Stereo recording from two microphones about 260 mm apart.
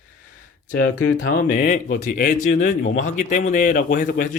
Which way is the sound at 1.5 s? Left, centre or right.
Left.